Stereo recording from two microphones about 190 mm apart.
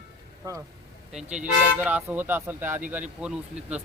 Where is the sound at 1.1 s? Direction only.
5° right (ahead or behind).